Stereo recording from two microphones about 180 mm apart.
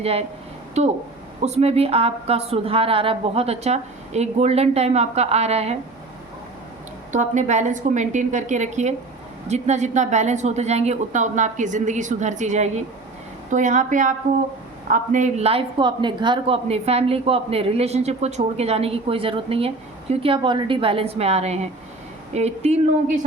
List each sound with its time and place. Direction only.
0.0 s speech: 35° right (ahead or behind)
7.1 s a woman's voice: 45° right (ahead or behind)